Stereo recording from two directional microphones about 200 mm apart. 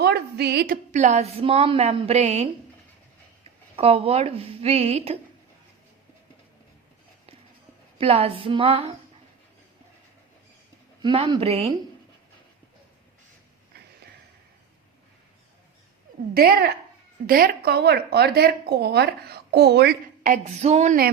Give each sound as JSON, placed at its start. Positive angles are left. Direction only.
{"t": 0.0, "sound": "a woman's voice", "side_deg": -55}
{"t": 3.8, "sound": "a woman's voice", "side_deg": -30}
{"t": 7.9, "sound": "a woman's voice", "side_deg": -30}
{"t": 11.0, "sound": "a woman's voice", "side_deg": -25}
{"t": 16.3, "sound": "a woman's voice", "side_deg": -50}